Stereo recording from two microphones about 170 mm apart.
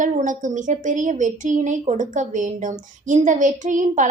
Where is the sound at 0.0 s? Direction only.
45° right (ahead or behind).